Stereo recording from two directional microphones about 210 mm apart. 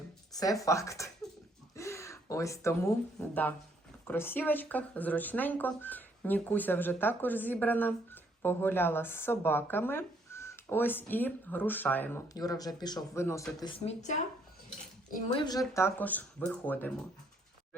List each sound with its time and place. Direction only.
0.6 s speech: 15° left (ahead or behind)
13.6 s speech: 25° left (ahead or behind)
15.7 s speech: 10° left (ahead or behind)